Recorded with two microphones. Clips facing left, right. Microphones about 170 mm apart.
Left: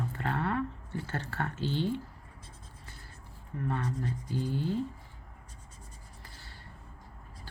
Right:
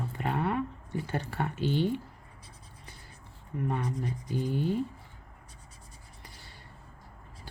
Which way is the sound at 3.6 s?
15° right (ahead or behind).